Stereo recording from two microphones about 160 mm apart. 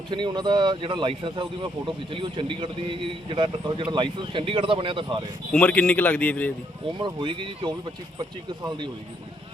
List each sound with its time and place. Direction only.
0.1 s a man's voice: 30° right (ahead or behind)
5.5 s speech: 5° left (ahead or behind)
7.0 s speech: 30° right (ahead or behind)